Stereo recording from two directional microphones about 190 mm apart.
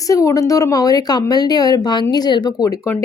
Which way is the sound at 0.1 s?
15° left (ahead or behind).